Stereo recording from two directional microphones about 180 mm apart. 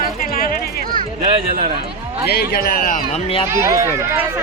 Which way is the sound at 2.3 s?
60° left (ahead or behind).